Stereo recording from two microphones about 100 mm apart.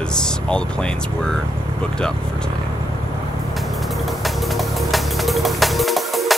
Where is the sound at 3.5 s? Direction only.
Centre (ahead or behind).